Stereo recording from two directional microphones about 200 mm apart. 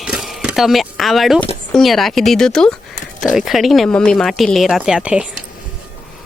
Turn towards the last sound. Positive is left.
turn(degrees=-5)  # may be behind; listen again after turning